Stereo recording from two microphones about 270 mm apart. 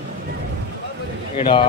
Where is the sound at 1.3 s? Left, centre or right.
Centre.